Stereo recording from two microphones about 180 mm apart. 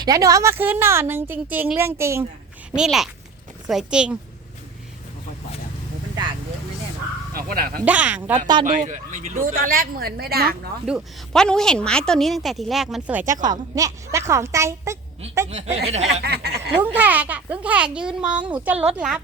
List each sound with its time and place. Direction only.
0.0 s a woman's voice: 20° right (ahead or behind)
2.7 s a woman's voice: 5° right (ahead or behind)
7.3 s speech: 55° right (ahead or behind)
7.9 s a woman's voice: 10° right (ahead or behind)
8.6 s a woman's voice: 45° right (ahead or behind)
10.8 s a woman's voice: 5° right (ahead or behind)
13.4 s a woman's voice: 20° right (ahead or behind)
15.4 s speech: 35° right (ahead or behind)
16.2 s snicker: 65° right (ahead or behind)
16.7 s a woman's voice: 10° right (ahead or behind)